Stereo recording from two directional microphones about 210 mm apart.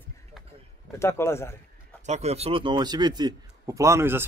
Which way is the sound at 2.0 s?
30° right (ahead or behind).